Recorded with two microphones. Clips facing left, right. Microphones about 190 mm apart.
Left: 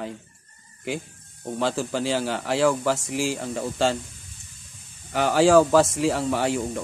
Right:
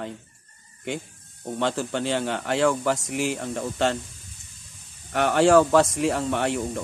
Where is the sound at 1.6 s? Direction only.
5° left (ahead or behind).